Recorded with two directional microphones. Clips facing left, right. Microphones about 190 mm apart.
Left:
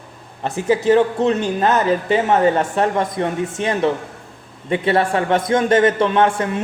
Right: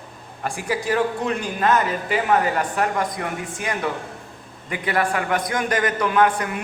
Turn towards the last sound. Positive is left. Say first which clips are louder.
# left 3 dB
turn(degrees=25)  # may be behind; listen again after turning